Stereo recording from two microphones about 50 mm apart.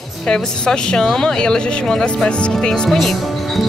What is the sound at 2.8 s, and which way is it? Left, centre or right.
Speech, centre.